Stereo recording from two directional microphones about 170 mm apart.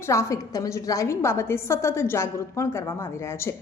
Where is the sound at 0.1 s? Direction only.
20° left (ahead or behind).